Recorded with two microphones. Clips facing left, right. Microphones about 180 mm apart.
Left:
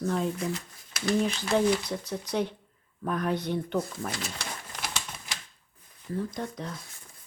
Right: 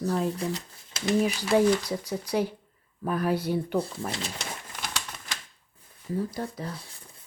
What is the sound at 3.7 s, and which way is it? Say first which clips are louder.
Speech: right 2 dB; 30° right (ahead or behind).